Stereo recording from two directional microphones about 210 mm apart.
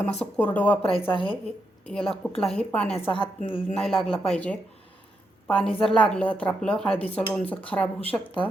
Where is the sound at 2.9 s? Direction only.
25° left (ahead or behind).